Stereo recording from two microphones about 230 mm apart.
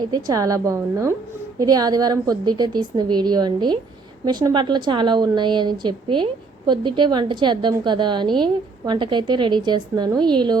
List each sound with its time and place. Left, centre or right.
0.1 s a woman's voice: centre